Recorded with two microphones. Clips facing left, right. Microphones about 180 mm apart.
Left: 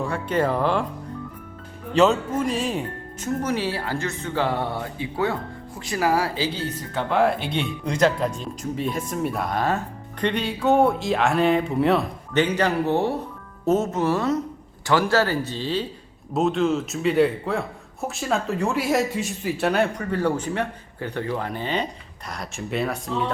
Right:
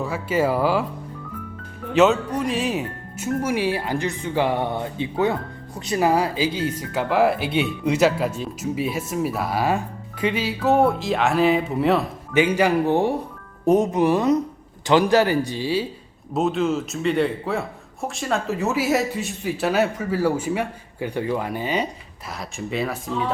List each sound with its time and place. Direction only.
0.0 s speech: 5° right (ahead or behind)
1.9 s speech: centre (ahead or behind)